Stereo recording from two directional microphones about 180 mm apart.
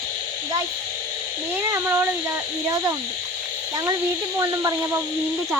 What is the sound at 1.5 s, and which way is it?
Speech, 15° right (ahead or behind).